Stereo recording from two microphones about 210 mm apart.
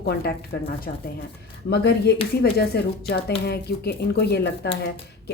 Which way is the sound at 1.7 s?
50° left (ahead or behind).